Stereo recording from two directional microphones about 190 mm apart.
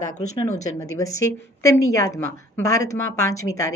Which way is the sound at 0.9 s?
15° left (ahead or behind).